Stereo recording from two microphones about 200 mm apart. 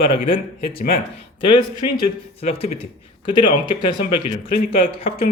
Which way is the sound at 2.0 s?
30° left (ahead or behind).